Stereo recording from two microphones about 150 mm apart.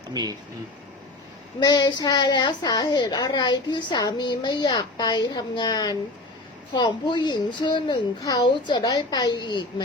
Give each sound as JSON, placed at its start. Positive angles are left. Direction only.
{"t": 0.1, "sound": "speech", "side_deg": -25}
{"t": 1.5, "sound": "a woman's voice", "side_deg": 30}